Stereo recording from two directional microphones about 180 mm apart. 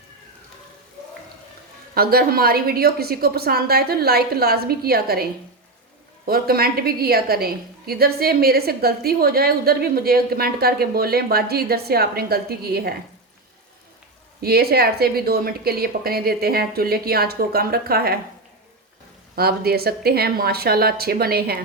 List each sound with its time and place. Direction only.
2.0 s a woman's voice: 60° right (ahead or behind)
14.4 s a woman's voice: 60° right (ahead or behind)
19.4 s a woman's voice: 60° right (ahead or behind)